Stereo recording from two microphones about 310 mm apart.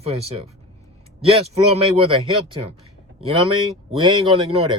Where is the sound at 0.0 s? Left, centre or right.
Centre.